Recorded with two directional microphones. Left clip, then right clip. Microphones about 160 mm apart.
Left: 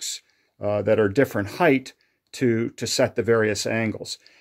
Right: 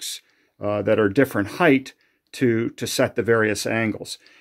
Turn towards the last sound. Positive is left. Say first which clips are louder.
# right 2 dB
turn(degrees=5)  # may be behind; listen again after turning